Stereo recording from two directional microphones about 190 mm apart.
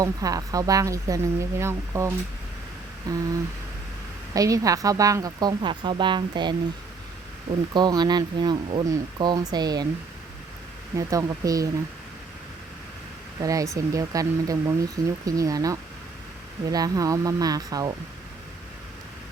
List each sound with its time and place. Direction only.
0.0 s a woman's voice: 20° right (ahead or behind)
4.4 s a woman's voice: 15° right (ahead or behind)
7.7 s a woman's voice: 20° right (ahead or behind)
10.9 s speech: 15° right (ahead or behind)
13.4 s a woman's voice: 15° right (ahead or behind)